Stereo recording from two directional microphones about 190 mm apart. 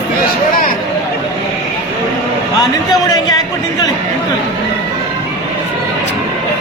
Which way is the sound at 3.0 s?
20° left (ahead or behind).